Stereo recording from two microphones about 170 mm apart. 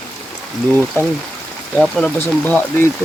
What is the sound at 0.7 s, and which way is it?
Speech, 10° left (ahead or behind).